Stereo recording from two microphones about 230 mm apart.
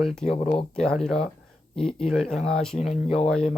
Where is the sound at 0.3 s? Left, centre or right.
Left.